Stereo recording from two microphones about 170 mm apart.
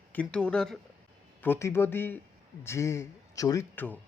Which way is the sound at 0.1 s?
5° left (ahead or behind).